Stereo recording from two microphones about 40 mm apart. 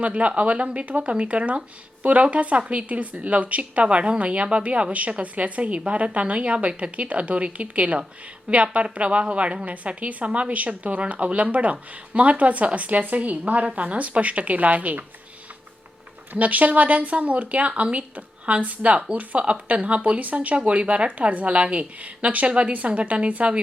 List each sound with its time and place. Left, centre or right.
0.0 s a woman's voice: right
16.4 s a woman's voice: right